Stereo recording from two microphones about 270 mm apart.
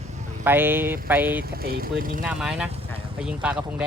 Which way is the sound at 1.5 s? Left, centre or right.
Right.